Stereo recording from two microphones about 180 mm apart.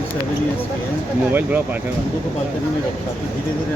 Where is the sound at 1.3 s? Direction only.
10° right (ahead or behind).